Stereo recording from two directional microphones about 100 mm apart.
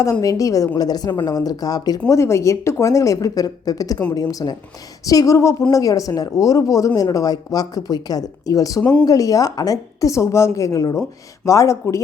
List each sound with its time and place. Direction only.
0.0 s speech: 35° left (ahead or behind)
2.0 s speech: 30° left (ahead or behind)
8.8 s speech: 10° left (ahead or behind)
9.0 s speech: 35° left (ahead or behind)